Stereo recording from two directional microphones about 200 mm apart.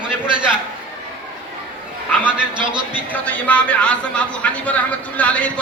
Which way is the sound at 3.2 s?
5° left (ahead or behind).